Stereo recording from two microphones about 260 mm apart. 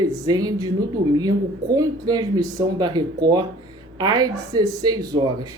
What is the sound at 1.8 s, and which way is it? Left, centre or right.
Speech, centre.